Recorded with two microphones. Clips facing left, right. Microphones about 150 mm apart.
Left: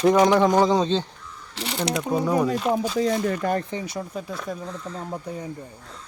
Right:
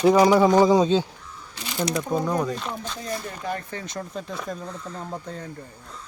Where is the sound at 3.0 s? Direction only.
90° left.